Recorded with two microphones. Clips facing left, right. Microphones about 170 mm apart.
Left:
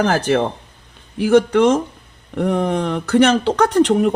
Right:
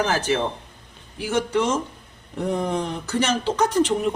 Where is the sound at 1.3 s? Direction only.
65° left (ahead or behind).